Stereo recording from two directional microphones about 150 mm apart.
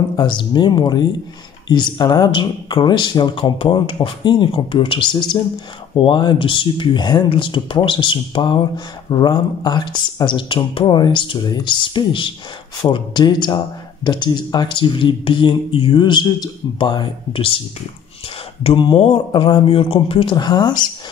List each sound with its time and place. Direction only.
0.1 s speech: 30° left (ahead or behind)
18.6 s speech: 35° left (ahead or behind)